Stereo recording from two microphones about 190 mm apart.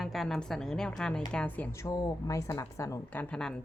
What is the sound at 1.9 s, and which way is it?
A woman's voice, 20° left (ahead or behind).